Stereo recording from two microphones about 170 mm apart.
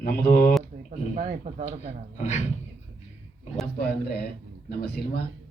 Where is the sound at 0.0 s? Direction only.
60° left (ahead or behind).